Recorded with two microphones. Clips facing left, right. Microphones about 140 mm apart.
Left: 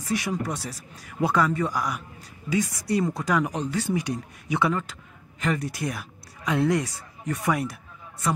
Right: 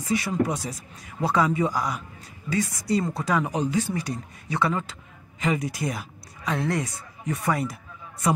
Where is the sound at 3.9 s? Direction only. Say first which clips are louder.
Left 3 dB; 10° left (ahead or behind).